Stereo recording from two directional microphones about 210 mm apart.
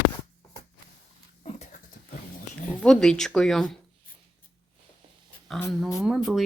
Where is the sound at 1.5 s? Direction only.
30° left (ahead or behind).